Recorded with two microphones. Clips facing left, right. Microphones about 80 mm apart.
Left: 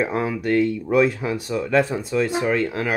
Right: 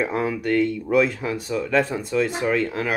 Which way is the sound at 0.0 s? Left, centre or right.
Centre.